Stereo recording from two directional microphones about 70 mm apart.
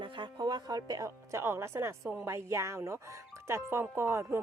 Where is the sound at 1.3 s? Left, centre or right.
Right.